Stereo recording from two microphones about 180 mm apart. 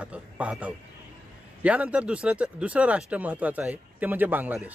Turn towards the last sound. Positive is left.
turn(degrees=-10)  # may be behind; listen again after turning